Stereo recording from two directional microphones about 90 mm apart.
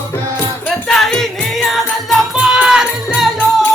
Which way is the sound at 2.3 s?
10° right (ahead or behind).